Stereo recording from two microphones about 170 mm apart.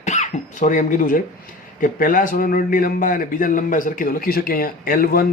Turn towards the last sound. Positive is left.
turn(degrees=60)  # may be behind; listen again after turning